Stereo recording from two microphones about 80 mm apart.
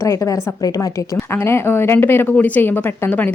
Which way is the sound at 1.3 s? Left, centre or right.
Left.